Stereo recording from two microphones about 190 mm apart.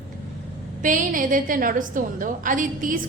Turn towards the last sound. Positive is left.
turn(degrees=-45)  # may be behind; listen again after turning